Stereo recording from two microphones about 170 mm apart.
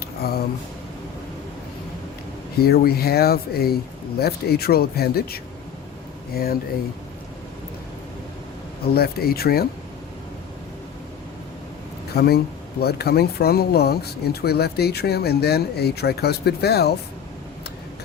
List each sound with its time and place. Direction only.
0.2 s speech: 65° left (ahead or behind)
2.6 s speech: 65° left (ahead or behind)
8.9 s speech: 65° left (ahead or behind)
12.1 s speech: 70° left (ahead or behind)